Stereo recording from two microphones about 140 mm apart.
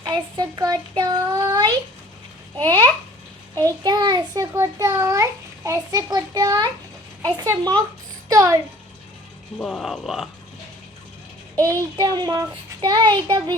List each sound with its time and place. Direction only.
0.0 s a child's voice: 30° right (ahead or behind)
9.6 s speech: centre (ahead or behind)
11.9 s child singing: 30° right (ahead or behind)